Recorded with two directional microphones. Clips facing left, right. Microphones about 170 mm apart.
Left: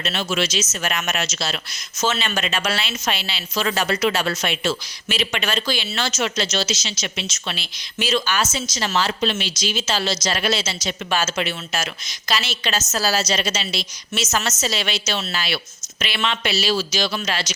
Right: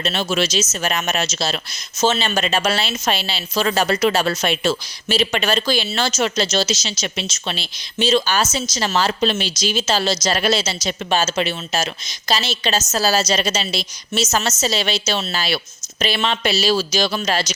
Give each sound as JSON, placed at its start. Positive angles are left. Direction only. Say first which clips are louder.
{"t": 0.0, "sound": "a woman's voice", "louder": "right 3 dB", "side_deg": -35}